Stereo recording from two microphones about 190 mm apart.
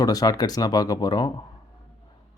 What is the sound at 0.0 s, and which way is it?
Speech, 20° left (ahead or behind).